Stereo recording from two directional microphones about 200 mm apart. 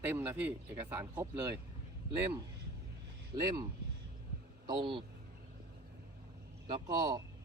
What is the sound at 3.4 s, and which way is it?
Speech, 20° right (ahead or behind).